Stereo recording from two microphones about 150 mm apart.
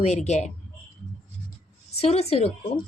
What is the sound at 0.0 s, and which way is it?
Speech, 45° left (ahead or behind).